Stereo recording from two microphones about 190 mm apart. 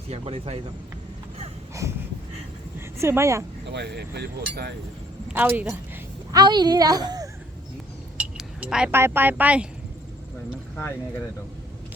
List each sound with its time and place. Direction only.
0.1 s speech: 30° right (ahead or behind)
2.7 s a woman's voice: 15° right (ahead or behind)
3.7 s speech: 60° right (ahead or behind)
5.3 s speech: 10° right (ahead or behind)
6.3 s a woman's voice: 20° right (ahead or behind)
8.2 s speech: 5° right (ahead or behind)